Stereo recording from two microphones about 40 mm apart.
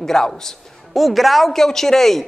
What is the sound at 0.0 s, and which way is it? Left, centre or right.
Speech, centre.